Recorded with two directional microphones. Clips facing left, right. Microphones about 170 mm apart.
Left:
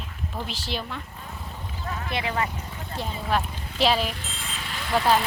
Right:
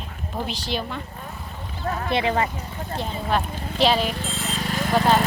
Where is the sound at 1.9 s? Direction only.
50° right (ahead or behind).